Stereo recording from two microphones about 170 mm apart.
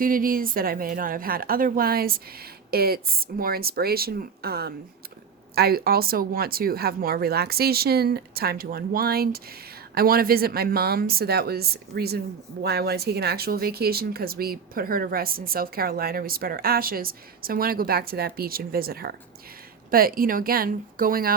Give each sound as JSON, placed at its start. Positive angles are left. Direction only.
{"t": 0.0, "sound": "speech", "side_deg": -55}